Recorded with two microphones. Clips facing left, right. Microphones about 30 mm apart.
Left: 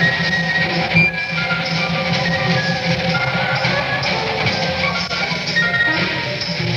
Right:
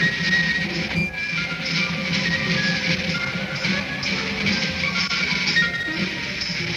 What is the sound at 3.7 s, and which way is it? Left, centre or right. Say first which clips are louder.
Music: left 6 dB; left.